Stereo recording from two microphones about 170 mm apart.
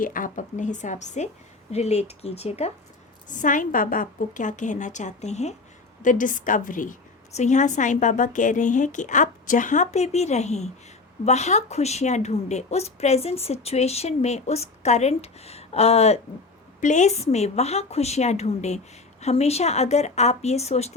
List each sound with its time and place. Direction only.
0.0 s a woman's voice: 55° left (ahead or behind)
3.2 s a woman's voice: 50° left (ahead or behind)